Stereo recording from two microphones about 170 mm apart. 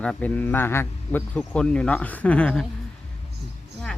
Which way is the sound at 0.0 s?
10° left (ahead or behind).